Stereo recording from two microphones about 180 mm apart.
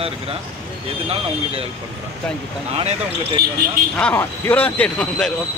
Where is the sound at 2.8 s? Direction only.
30° right (ahead or behind).